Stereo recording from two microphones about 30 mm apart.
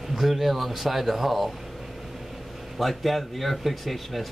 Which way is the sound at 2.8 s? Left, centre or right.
Centre.